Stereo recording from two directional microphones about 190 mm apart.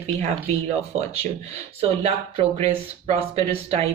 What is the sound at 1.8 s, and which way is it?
Speech, 30° right (ahead or behind).